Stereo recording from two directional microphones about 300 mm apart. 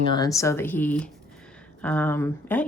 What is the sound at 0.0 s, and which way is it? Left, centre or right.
A woman's voice, centre.